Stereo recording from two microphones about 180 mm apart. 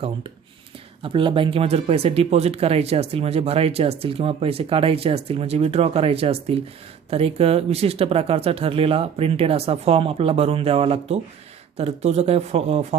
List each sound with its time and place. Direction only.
1.0 s speech: 30° right (ahead or behind)